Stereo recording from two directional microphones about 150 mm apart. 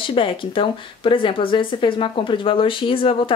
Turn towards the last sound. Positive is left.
turn(degrees=35)  # may be behind; listen again after turning